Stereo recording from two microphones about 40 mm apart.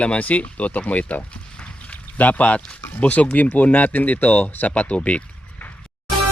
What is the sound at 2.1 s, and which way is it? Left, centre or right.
Speech, left.